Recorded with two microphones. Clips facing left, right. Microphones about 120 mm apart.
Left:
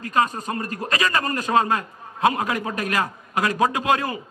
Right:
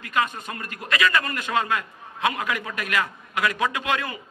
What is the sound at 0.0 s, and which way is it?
A man's voice, 35° left (ahead or behind).